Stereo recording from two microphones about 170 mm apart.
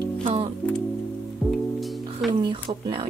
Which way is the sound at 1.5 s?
Centre (ahead or behind).